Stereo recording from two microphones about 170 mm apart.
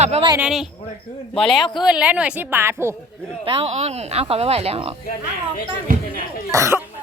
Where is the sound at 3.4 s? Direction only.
35° right (ahead or behind).